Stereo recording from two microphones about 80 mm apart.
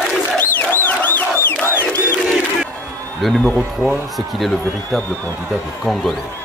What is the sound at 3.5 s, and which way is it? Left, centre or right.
Speech, centre.